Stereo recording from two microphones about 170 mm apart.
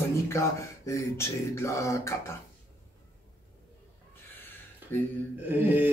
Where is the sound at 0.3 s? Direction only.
15° left (ahead or behind).